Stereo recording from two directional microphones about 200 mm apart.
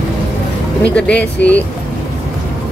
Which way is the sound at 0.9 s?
5° left (ahead or behind).